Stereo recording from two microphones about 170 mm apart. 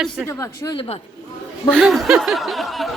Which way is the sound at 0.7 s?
30° left (ahead or behind).